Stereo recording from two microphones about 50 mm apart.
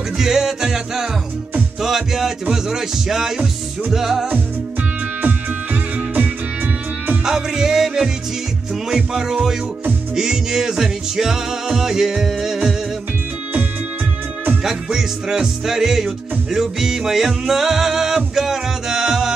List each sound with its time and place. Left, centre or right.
0.2 s music: centre
7.2 s music: centre
14.6 s music: centre